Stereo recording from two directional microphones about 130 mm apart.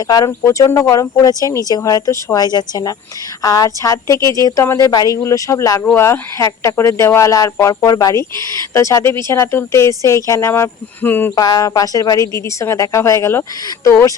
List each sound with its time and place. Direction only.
0.1 s a woman's voice: 25° left (ahead or behind)
11.3 s a woman's voice: 30° left (ahead or behind)